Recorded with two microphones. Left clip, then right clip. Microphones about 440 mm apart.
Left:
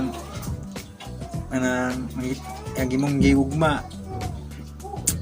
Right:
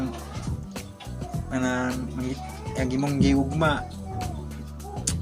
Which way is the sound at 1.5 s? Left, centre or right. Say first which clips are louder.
Left 3 dB; right.